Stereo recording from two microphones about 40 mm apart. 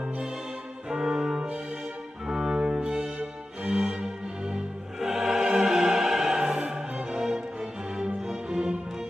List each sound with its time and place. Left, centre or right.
0.8 s music: centre
2.2 s cello: centre
5.0 s music: centre